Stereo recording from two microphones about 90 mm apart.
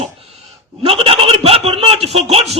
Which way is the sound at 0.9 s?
90° right.